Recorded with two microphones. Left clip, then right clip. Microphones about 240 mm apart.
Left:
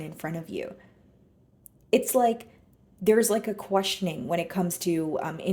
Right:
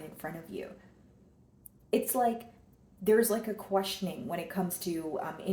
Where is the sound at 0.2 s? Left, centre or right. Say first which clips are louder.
Left 6 dB; left.